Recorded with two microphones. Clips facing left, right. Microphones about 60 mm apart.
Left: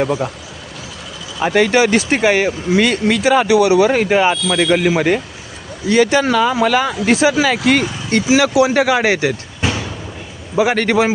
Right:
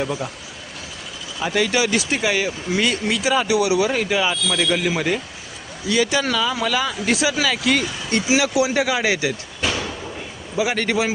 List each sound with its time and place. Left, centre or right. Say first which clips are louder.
0.0 s speech: left 7 dB; left
1.4 s speech: left 7 dB; left
10.6 s speech: left 6 dB; left